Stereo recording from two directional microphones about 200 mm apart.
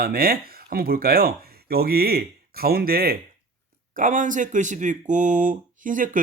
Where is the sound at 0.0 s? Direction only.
50° right (ahead or behind).